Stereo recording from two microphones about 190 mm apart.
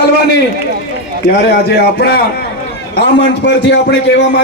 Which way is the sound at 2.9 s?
70° left (ahead or behind).